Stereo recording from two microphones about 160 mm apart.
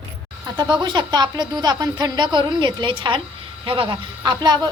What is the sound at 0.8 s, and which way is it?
A woman's voice, 25° right (ahead or behind).